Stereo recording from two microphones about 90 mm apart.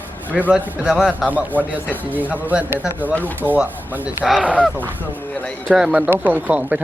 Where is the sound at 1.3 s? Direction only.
15° right (ahead or behind).